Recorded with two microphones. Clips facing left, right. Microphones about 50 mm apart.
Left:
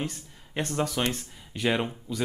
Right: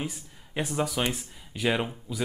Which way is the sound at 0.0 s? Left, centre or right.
Centre.